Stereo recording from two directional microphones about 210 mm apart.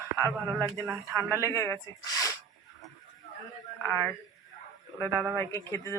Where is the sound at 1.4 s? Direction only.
15° left (ahead or behind).